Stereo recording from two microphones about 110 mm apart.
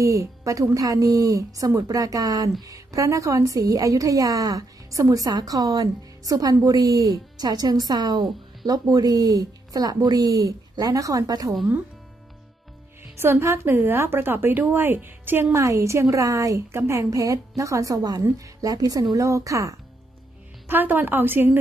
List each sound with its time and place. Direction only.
0.0 s a woman's voice: 30° right (ahead or behind)
13.2 s a woman's voice: 20° right (ahead or behind)
20.6 s a woman's voice: 20° right (ahead or behind)